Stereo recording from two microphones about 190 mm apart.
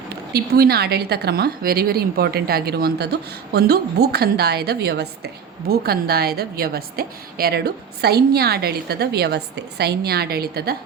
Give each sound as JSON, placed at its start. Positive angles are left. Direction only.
{"t": 0.3, "sound": "a woman's voice", "side_deg": -55}